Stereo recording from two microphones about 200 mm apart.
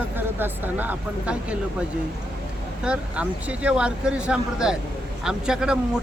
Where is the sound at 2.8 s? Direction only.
5° right (ahead or behind).